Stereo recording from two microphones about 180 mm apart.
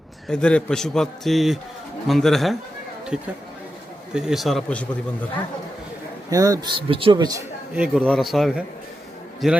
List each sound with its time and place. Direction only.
0.3 s a man's voice: 5° left (ahead or behind)
6.3 s a man's voice: 20° right (ahead or behind)
7.8 s a man's voice: 5° right (ahead or behind)